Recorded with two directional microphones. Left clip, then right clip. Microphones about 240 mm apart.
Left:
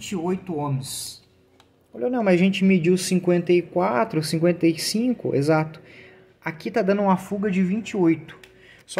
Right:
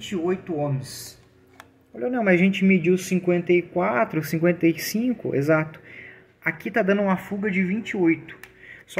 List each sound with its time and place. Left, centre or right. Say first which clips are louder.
0.2 s speech: right 2 dB; centre
2.0 s speech: even; centre
2.9 s speech: left 1 dB; left
3.7 s speech: left 1 dB; centre